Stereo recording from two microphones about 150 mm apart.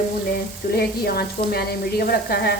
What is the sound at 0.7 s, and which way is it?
Sizzle, 90° left.